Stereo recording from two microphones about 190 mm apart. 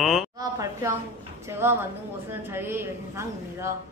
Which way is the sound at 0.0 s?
Centre (ahead or behind).